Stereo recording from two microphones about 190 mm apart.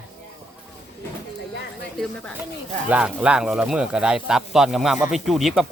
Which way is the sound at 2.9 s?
5° right (ahead or behind).